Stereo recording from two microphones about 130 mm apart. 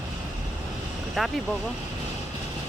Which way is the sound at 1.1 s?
Centre (ahead or behind).